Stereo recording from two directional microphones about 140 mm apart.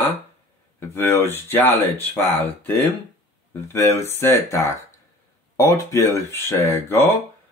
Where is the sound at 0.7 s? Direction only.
20° left (ahead or behind).